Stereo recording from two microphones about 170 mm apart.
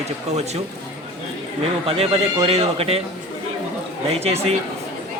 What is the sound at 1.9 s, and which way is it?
Speech, 35° right (ahead or behind).